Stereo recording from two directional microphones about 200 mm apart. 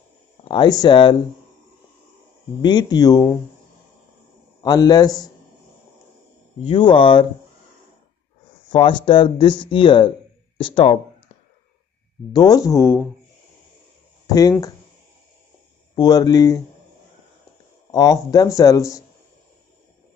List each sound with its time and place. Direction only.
0.5 s speech: 20° left (ahead or behind)
2.6 s speech: 20° left (ahead or behind)
4.6 s speech: 20° left (ahead or behind)
6.6 s speech: 25° left (ahead or behind)
8.6 s speech: 25° left (ahead or behind)
12.3 s speech: 20° left (ahead or behind)
14.2 s speech: 20° left (ahead or behind)
15.9 s speech: 20° left (ahead or behind)
17.9 s speech: 20° left (ahead or behind)